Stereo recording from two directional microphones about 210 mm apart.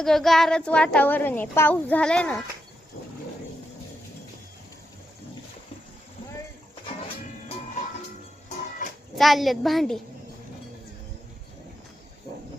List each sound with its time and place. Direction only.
0.0 s a woman's voice: centre (ahead or behind)
9.1 s a woman's voice: centre (ahead or behind)